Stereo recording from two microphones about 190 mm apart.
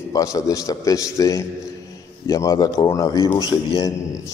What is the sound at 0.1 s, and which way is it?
A man's voice, 15° left (ahead or behind).